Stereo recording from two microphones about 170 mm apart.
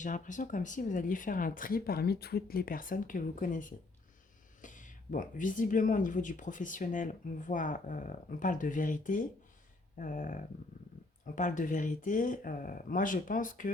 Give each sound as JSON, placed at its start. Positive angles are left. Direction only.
{"t": 0.0, "sound": "speech", "side_deg": 50}